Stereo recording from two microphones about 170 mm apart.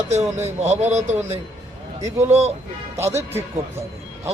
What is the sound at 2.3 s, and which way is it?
Speech, 40° right (ahead or behind).